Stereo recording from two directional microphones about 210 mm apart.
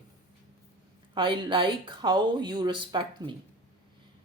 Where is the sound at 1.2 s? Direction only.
25° right (ahead or behind).